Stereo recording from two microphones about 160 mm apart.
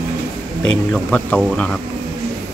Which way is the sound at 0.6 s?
10° left (ahead or behind).